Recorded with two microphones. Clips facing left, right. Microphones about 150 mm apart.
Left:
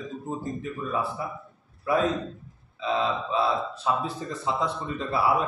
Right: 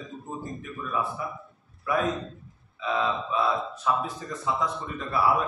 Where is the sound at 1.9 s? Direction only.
30° left (ahead or behind).